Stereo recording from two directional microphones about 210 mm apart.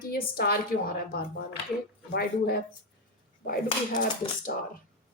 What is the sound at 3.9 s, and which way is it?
Speech, 35° left (ahead or behind).